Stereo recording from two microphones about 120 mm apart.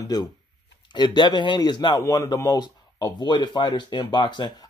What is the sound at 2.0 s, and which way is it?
Speech, 25° left (ahead or behind).